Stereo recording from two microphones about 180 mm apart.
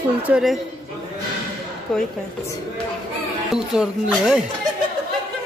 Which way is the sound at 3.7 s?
5° right (ahead or behind).